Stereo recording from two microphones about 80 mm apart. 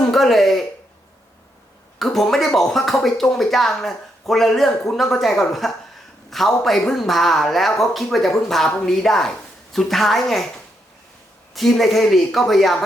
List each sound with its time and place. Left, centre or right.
0.0 s speech: centre
2.0 s speech: centre
11.5 s speech: centre